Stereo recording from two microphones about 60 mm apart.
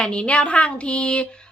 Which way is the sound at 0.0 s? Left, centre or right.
Centre.